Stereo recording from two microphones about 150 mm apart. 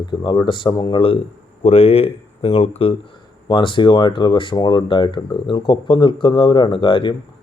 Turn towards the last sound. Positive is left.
turn(degrees=35)  # may be behind; listen again after turning